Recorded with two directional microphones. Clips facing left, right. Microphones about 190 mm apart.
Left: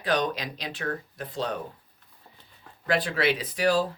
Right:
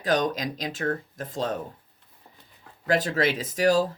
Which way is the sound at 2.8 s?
40° right (ahead or behind).